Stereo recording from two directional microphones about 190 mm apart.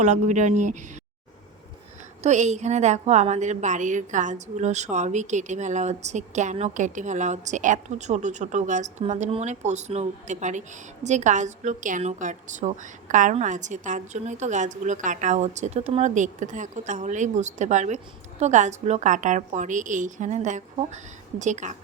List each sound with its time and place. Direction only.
0.0 s a woman's voice: 40° right (ahead or behind)
2.2 s a woman's voice: 40° right (ahead or behind)